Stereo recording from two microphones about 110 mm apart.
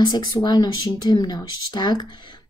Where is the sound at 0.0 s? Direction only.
40° left (ahead or behind).